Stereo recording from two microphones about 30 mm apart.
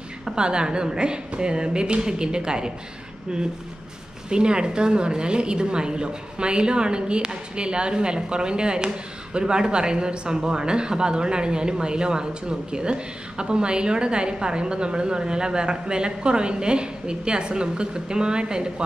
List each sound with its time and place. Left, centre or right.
0.4 s a woman's voice: right
4.3 s a woman's voice: right